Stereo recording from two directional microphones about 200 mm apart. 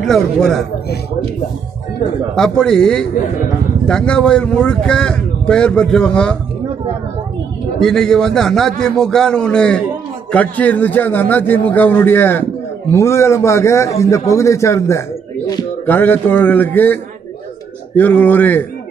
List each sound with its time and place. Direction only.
0.0 s speech: centre (ahead or behind)
2.3 s speech: 5° left (ahead or behind)
7.8 s a man's voice: centre (ahead or behind)